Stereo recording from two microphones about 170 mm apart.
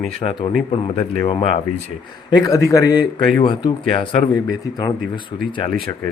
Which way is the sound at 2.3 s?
25° left (ahead or behind).